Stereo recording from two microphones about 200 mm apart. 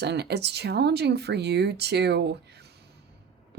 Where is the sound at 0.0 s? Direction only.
55° right (ahead or behind).